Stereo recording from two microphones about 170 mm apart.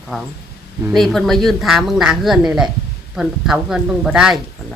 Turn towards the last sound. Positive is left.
turn(degrees=-5)  # may be behind; listen again after turning